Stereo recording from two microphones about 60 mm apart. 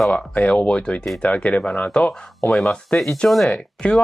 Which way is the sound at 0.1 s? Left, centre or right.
Centre.